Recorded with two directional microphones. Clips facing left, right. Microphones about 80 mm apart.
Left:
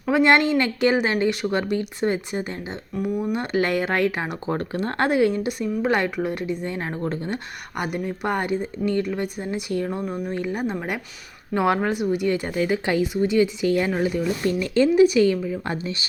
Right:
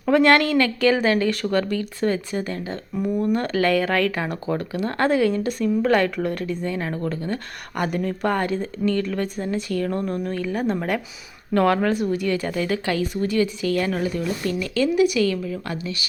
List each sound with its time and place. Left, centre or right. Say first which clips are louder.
0.0 s speech: right 1 dB; centre
3.0 s speech: right 3 dB; centre
3.4 s speech: right 2 dB; left
4.5 s speech: even; left
5.0 s speech: right 1 dB; centre
6.7 s speech: right 1 dB; left
7.8 s speech: right 3 dB; centre
10.6 s speech: right 3 dB; centre; by 16.0 s left